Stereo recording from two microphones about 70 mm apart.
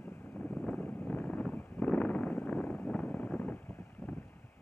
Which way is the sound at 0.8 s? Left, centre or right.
Left.